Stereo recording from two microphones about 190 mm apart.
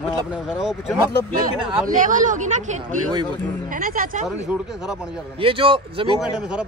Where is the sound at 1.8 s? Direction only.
45° right (ahead or behind).